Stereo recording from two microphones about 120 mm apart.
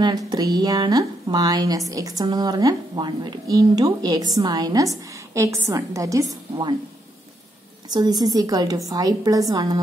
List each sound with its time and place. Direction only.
0.0 s a woman's voice: 35° right (ahead or behind)
7.9 s a woman's voice: 35° right (ahead or behind)